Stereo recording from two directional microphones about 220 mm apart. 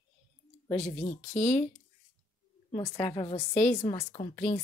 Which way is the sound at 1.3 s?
5° left (ahead or behind).